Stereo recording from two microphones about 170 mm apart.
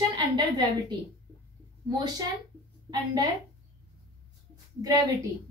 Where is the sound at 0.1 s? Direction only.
25° right (ahead or behind).